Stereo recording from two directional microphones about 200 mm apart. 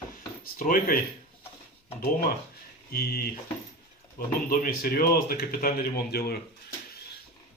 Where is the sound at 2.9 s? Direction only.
50° left (ahead or behind).